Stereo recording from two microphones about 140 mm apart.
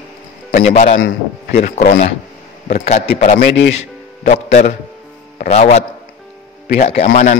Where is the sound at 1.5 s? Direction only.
65° left (ahead or behind); by 2.0 s 80° left.